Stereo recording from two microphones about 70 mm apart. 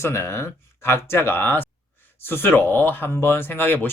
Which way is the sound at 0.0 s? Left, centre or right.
Left.